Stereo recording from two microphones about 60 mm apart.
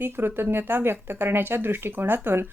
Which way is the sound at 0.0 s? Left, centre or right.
Right.